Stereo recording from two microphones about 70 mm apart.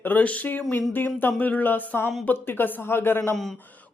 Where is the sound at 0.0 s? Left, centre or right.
Left.